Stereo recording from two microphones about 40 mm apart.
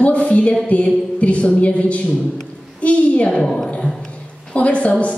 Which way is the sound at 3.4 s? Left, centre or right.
Centre.